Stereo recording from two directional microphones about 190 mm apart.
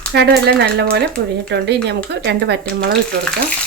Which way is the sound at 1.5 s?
65° right (ahead or behind).